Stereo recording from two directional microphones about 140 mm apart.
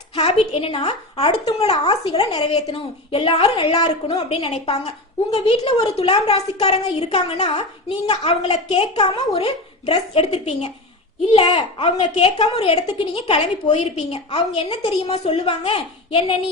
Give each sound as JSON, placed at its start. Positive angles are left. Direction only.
{"t": 0.2, "sound": "a woman's voice", "side_deg": 45}